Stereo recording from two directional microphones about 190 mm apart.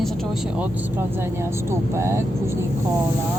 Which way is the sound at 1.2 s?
15° right (ahead or behind).